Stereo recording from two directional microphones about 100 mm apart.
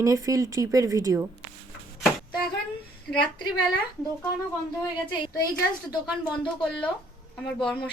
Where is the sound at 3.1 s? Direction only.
5° left (ahead or behind).